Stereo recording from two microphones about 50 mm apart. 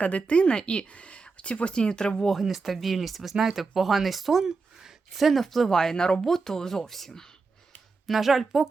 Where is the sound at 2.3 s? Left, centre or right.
Centre.